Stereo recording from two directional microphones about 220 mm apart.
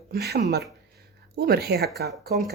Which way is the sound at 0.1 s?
45° right (ahead or behind).